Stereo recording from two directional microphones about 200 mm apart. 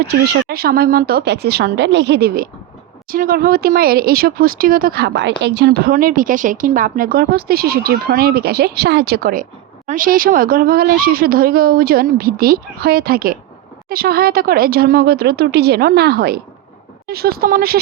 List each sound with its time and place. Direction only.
0.1 s speech: 50° right (ahead or behind)